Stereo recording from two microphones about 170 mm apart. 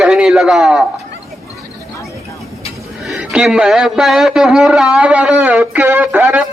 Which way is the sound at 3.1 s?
Centre (ahead or behind).